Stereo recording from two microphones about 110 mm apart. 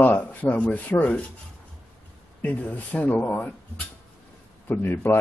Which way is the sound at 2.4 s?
15° left (ahead or behind).